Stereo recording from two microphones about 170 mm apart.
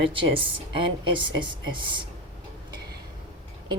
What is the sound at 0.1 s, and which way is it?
A woman's voice, 30° right (ahead or behind).